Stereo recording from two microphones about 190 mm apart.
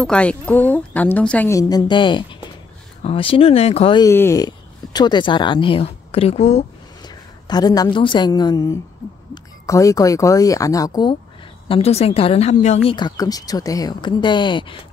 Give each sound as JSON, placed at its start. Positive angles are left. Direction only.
{"t": 0.0, "sound": "a woman's voice", "side_deg": 5}
{"t": 4.0, "sound": "speech", "side_deg": 15}
{"t": 7.0, "sound": "a woman's voice", "side_deg": 20}
{"t": 12.9, "sound": "speech", "side_deg": 20}